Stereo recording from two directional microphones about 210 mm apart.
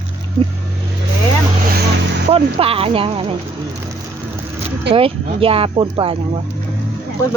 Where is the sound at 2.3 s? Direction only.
25° right (ahead or behind).